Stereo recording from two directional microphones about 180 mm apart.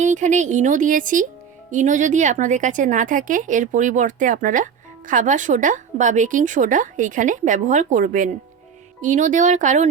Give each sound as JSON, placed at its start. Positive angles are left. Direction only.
{"t": 0.0, "sound": "a woman's voice", "side_deg": -45}